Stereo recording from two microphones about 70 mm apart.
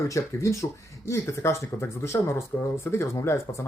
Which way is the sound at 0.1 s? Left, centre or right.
Left.